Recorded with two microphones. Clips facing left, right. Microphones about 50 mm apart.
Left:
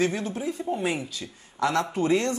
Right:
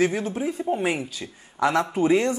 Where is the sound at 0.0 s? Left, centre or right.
Centre.